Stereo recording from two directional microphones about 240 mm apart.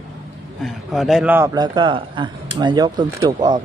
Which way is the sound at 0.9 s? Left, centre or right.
Centre.